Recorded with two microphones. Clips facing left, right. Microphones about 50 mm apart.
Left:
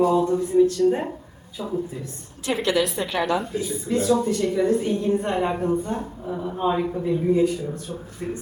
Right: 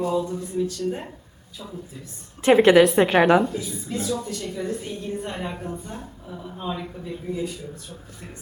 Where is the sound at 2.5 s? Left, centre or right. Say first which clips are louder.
Right 8 dB; right.